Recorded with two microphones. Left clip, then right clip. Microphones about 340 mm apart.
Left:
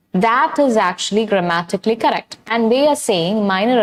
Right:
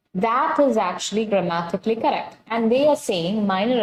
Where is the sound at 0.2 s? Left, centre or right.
Left.